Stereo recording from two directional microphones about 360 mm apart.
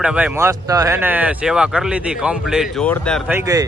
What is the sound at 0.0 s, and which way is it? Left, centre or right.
Speech, centre.